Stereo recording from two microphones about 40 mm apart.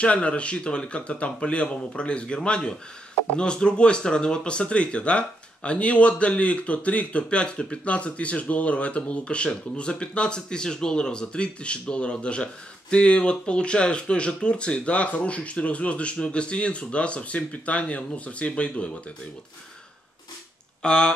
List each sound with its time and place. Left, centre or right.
0.0 s speech: left
20.8 s speech: left